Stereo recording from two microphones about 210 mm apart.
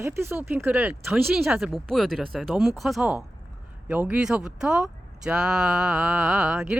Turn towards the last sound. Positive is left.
turn(degrees=-5)  # may be behind; listen again after turning